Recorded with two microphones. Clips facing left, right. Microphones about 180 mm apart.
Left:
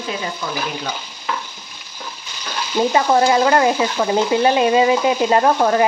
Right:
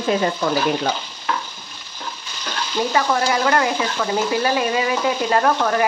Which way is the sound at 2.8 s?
20° left (ahead or behind).